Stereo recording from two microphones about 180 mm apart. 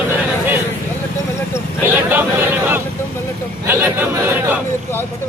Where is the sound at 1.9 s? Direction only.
10° right (ahead or behind).